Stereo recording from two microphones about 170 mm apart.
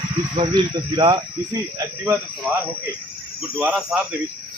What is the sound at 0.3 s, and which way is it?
Speech, 25° right (ahead or behind).